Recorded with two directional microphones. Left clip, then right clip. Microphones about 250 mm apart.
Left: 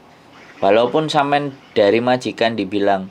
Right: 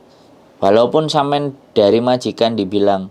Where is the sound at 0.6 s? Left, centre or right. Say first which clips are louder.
Right 2 dB; right.